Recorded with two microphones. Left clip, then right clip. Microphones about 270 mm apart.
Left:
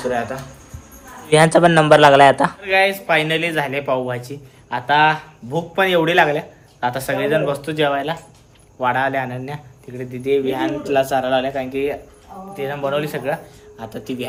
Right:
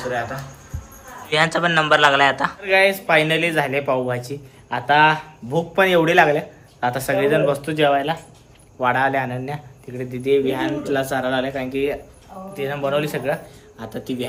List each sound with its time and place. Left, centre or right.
0.1 s a man's voice: centre